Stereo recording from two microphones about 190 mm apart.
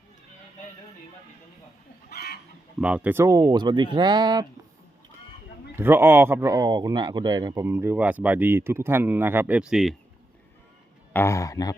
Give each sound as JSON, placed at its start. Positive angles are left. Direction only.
{"t": 2.0, "sound": "chicken", "side_deg": 55}
{"t": 2.8, "sound": "speech", "side_deg": -5}
{"t": 5.7, "sound": "speech", "side_deg": -10}
{"t": 11.1, "sound": "speech", "side_deg": 15}